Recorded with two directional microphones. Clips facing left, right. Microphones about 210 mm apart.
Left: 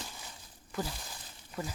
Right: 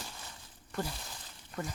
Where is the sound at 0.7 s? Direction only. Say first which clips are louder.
Even; 5° left (ahead or behind).